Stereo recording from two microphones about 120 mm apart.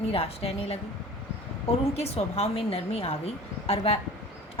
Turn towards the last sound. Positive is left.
turn(degrees=60)  # may be behind; listen again after turning